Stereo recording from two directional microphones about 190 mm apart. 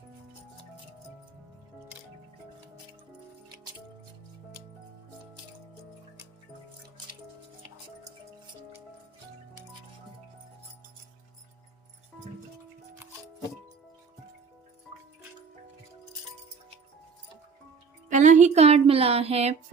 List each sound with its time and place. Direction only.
18.1 s speech: 40° right (ahead or behind)